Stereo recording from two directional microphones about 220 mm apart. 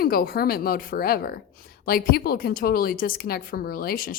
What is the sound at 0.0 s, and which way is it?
A woman's voice, 45° left (ahead or behind).